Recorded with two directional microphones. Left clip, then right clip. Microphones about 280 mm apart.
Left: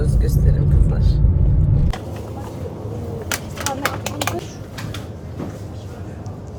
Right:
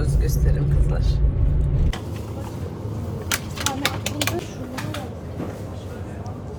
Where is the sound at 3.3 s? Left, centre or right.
Centre.